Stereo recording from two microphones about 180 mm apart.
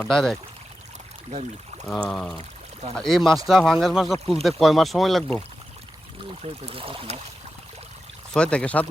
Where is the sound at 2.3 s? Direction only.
35° right (ahead or behind).